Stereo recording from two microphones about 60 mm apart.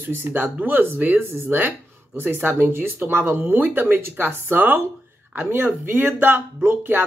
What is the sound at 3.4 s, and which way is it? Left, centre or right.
Speech, right.